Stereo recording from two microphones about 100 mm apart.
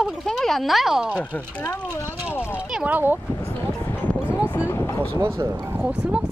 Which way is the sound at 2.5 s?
10° right (ahead or behind).